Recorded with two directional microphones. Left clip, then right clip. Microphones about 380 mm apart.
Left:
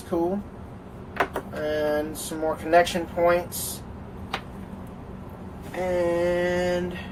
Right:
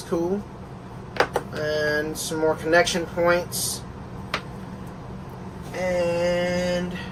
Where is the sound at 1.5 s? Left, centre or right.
Centre.